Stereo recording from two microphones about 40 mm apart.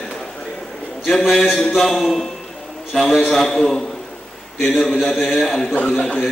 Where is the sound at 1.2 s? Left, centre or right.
Centre.